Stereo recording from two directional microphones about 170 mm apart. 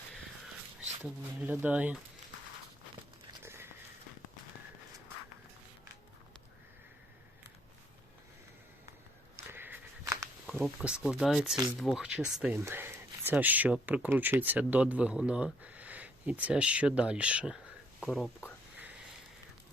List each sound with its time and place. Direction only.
1.4 s speech: 10° right (ahead or behind)
3.4 s walk: 15° right (ahead or behind)
9.3 s walk: 15° right (ahead or behind)
10.4 s speech: centre (ahead or behind)